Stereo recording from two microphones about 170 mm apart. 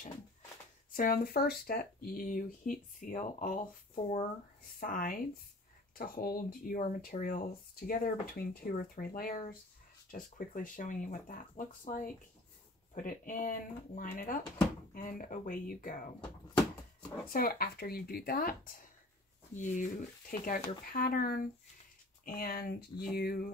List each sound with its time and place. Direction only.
0.9 s speech: 55° left (ahead or behind)
17.3 s speech: 60° left (ahead or behind)
19.5 s speech: 45° left (ahead or behind); by 23.5 s 65° left (ahead or behind)